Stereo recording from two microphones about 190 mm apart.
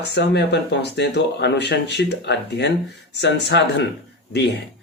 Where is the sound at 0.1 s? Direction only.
65° left (ahead or behind).